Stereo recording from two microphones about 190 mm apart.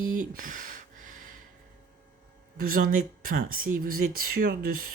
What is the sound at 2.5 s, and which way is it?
Speech, 50° right (ahead or behind).